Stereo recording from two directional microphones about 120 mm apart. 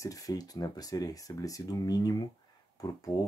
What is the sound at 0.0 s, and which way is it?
Speech, 30° left (ahead or behind).